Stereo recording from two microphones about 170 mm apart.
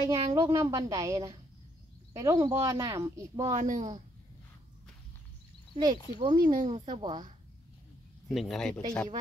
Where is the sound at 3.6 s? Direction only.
45° right (ahead or behind).